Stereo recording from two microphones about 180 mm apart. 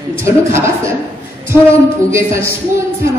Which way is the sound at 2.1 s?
15° right (ahead or behind).